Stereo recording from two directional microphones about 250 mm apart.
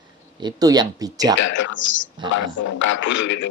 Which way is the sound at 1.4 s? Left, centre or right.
Left.